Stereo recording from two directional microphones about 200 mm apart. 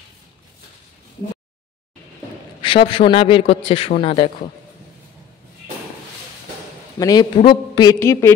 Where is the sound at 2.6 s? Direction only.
25° left (ahead or behind).